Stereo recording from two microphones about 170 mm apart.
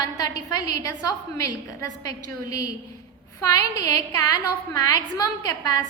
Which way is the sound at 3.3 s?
20° left (ahead or behind).